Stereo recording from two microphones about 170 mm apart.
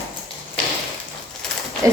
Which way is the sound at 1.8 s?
20° right (ahead or behind).